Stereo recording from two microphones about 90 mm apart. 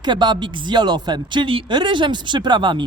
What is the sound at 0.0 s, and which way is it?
Speech, 55° right (ahead or behind).